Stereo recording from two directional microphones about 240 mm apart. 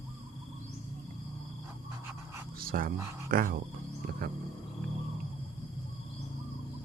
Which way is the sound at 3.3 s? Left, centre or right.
Right.